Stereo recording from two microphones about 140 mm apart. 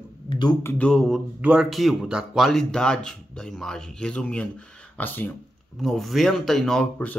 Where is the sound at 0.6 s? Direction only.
15° left (ahead or behind).